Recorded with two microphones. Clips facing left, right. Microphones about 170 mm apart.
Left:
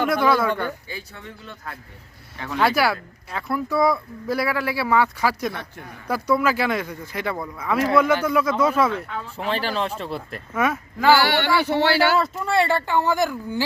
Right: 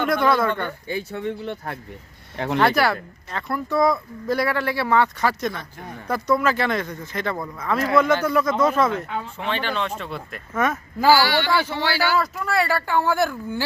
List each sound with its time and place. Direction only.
0.0 s speech: 5° left (ahead or behind)
1.1 s speech: 65° right (ahead or behind)
2.6 s speech: 5° left (ahead or behind)
9.4 s speech: 35° left (ahead or behind)
10.5 s speech: 10° left (ahead or behind)
11.2 s speech: 60° left (ahead or behind)
12.1 s speech: 25° left (ahead or behind)